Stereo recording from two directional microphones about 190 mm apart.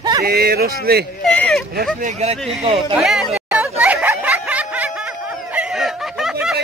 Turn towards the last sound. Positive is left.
turn(degrees=0)  # may be behind; listen again after turning